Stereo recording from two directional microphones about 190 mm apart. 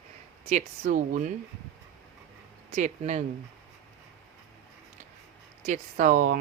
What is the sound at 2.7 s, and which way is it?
Speech, 40° right (ahead or behind).